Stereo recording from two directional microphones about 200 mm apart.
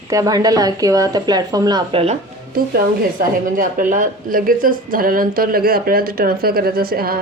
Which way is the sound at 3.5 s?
40° right (ahead or behind).